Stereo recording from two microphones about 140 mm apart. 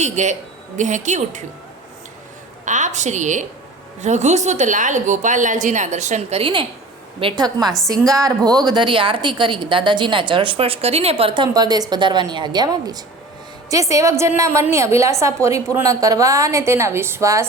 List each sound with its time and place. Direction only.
0.0 s a woman's voice: 60° right (ahead or behind)
2.6 s a woman's voice: 60° right (ahead or behind); by 11.4 s 40° right (ahead or behind)
11.5 s a woman's voice: 30° right (ahead or behind)